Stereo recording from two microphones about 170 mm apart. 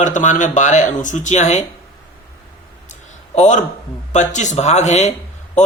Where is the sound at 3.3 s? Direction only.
45° left (ahead or behind).